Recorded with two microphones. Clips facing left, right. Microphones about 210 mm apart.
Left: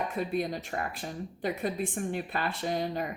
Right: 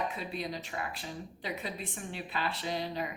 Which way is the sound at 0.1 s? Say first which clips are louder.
Left 7 dB; 50° left (ahead or behind).